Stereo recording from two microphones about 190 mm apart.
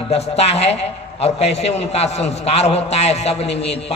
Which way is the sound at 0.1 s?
35° left (ahead or behind).